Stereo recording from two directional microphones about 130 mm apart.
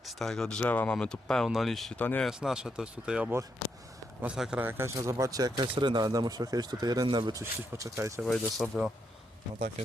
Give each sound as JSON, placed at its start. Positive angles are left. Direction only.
{"t": 0.0, "sound": "speech", "side_deg": 0}
{"t": 2.0, "sound": "speech", "side_deg": 10}
{"t": 2.2, "sound": "a man's voice", "side_deg": -5}
{"t": 4.6, "sound": "a man's voice", "side_deg": -15}
{"t": 8.2, "sound": "speech", "side_deg": 0}